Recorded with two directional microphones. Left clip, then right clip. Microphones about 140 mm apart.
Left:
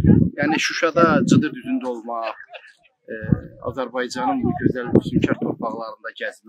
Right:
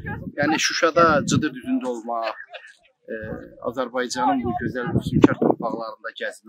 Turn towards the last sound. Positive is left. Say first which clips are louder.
# left 1 dB
turn(degrees=-5)  # may be behind; listen again after turning